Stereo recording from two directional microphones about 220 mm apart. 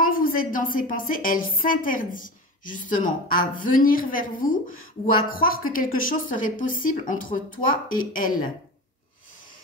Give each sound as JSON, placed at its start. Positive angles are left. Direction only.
{"t": 0.0, "sound": "a woman's voice", "side_deg": 40}